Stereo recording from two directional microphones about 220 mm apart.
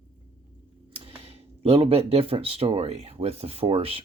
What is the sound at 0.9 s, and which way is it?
Speech, 25° right (ahead or behind).